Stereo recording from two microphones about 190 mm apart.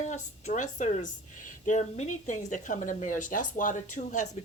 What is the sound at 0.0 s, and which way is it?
A woman's voice, 40° left (ahead or behind).